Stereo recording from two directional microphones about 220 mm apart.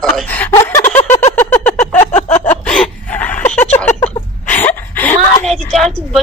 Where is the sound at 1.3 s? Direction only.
10° left (ahead or behind).